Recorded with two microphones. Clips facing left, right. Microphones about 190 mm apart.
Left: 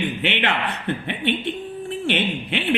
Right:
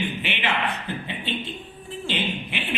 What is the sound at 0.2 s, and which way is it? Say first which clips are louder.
A man's voice: left 4 dB; 65° left (ahead or behind).